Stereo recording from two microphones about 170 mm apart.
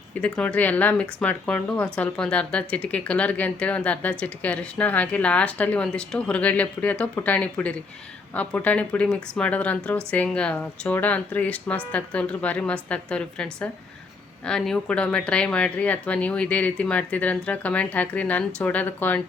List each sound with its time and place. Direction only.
0.1 s speech: 10° left (ahead or behind)